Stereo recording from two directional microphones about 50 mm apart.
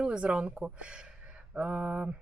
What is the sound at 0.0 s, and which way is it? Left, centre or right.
Speech, centre.